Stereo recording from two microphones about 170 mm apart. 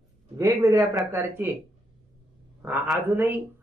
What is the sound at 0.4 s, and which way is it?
Speech, 20° right (ahead or behind).